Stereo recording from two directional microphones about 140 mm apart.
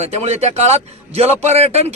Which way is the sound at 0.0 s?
50° right (ahead or behind).